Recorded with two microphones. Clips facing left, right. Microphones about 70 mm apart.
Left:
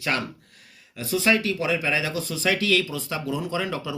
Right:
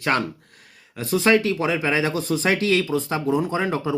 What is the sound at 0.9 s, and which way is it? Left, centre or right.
Speech, right.